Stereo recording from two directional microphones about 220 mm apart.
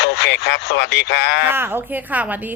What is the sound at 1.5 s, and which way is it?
Speech, 10° right (ahead or behind).